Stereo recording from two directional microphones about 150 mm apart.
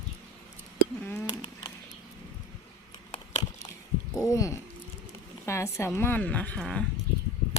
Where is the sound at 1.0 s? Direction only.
15° left (ahead or behind).